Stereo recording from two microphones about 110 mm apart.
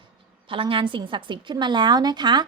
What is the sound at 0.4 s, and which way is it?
A woman's voice, 50° right (ahead or behind).